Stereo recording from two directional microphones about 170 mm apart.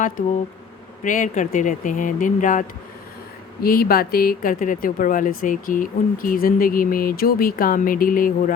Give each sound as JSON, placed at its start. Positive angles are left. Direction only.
{"t": 1.0, "sound": "speech", "side_deg": 50}
{"t": 3.6, "sound": "speech", "side_deg": 60}